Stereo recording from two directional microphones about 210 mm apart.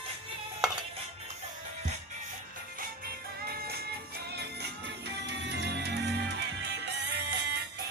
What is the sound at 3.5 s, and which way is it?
Music, 50° right (ahead or behind).